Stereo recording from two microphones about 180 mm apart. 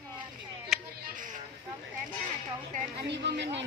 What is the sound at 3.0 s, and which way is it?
Speech, 70° right (ahead or behind).